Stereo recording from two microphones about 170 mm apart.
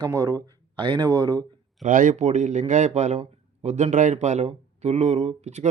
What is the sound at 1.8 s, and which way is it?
Speech, 50° right (ahead or behind).